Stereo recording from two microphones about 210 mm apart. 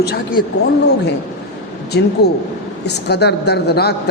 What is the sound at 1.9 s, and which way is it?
A man's voice, 55° left (ahead or behind).